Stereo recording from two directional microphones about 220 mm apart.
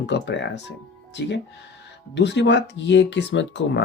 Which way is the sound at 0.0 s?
50° left (ahead or behind).